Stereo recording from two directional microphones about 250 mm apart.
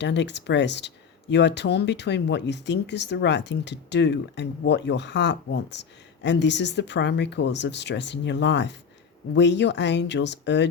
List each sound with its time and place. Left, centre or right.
0.0 s speech: left